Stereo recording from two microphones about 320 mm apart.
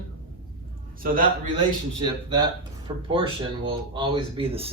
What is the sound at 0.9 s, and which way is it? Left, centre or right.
Speech, right.